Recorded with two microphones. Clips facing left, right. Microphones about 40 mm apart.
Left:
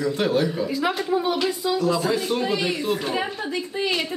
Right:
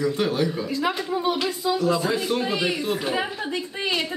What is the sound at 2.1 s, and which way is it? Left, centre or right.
Speech, centre.